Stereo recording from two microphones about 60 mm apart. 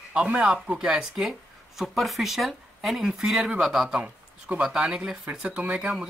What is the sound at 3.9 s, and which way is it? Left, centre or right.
Speech, centre.